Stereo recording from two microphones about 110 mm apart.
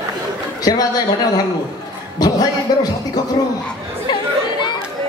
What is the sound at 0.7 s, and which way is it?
Music, 35° left (ahead or behind).